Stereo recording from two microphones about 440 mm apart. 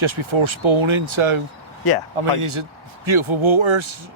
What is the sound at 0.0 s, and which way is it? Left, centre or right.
Speech, right.